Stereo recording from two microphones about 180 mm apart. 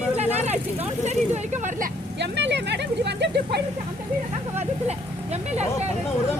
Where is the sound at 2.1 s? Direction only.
75° right (ahead or behind).